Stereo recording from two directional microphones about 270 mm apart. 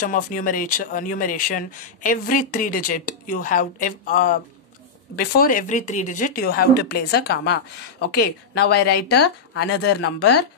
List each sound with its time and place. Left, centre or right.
0.0 s speech: left